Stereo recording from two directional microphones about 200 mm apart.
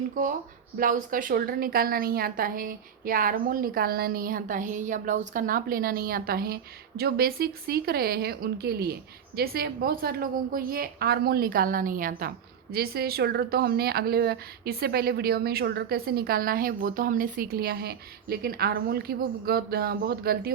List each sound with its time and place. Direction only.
0.2 s a woman's voice: 40° right (ahead or behind)